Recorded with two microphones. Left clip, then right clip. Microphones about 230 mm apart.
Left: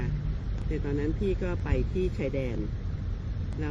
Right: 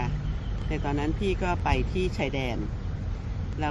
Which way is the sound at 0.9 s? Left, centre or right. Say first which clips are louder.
Right 2 dB; right.